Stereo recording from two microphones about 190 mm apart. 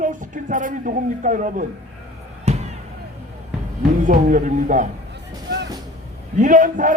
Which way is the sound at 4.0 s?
40° right (ahead or behind).